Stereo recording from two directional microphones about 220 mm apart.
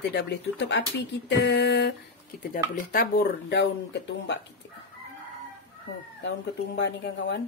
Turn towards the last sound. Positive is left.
turn(degrees=55)  # may be behind; listen again after turning